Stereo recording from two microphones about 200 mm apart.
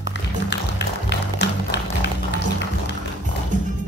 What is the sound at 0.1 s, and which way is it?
Music, 60° left (ahead or behind).